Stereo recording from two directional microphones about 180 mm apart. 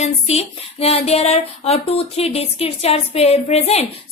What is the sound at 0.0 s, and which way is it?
Child singing, 35° left (ahead or behind).